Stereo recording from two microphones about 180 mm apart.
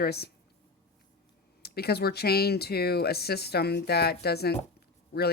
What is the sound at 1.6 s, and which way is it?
A woman's voice, 60° left (ahead or behind).